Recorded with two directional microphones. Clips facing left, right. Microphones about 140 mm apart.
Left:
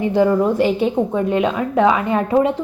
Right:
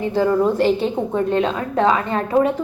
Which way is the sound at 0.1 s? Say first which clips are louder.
Left 1 dB; 15° left (ahead or behind).